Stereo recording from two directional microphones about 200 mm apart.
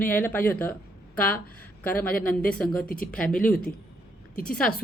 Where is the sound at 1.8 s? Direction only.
10° left (ahead or behind).